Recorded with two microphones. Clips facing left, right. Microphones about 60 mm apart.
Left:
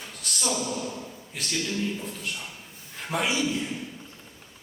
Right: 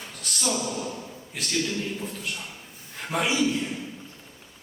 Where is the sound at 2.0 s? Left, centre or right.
Centre.